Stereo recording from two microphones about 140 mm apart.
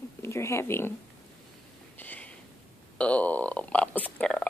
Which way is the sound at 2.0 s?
10° left (ahead or behind).